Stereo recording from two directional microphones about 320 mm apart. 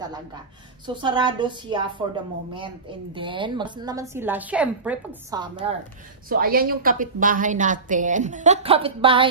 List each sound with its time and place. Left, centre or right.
0.0 s a woman's voice: centre
6.2 s a woman's voice: right